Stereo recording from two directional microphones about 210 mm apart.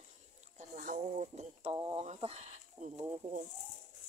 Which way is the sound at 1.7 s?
20° right (ahead or behind).